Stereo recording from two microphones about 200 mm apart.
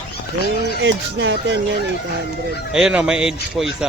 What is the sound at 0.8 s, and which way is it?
Speech, 65° right (ahead or behind).